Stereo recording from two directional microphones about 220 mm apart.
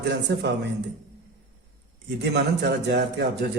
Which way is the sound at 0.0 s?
50° right (ahead or behind).